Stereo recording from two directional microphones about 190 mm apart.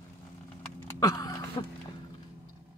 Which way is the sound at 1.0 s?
20° left (ahead or behind).